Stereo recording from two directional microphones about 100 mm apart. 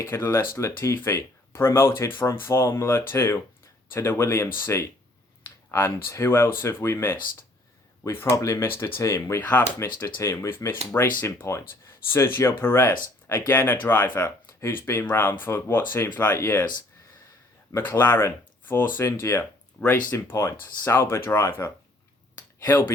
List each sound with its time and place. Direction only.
0.0 s speech: 25° left (ahead or behind)
9.4 s speech: 15° left (ahead or behind)
10.2 s speech: 30° left (ahead or behind)
17.7 s speech: 25° left (ahead or behind)